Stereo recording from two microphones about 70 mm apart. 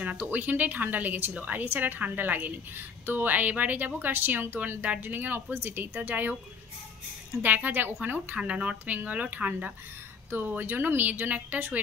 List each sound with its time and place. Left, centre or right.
0.0 s speech: right
7.4 s speech: right